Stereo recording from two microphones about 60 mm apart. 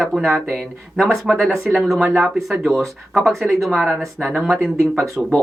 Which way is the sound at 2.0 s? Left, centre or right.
Right.